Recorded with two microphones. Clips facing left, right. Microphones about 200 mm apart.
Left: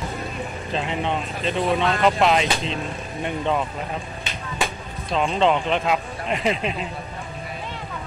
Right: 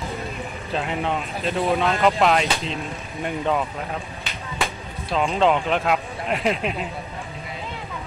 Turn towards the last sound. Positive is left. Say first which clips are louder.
# even
turn(degrees=-5)  # may be behind; listen again after turning